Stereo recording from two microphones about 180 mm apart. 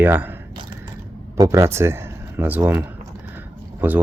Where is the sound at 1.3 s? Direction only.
20° right (ahead or behind).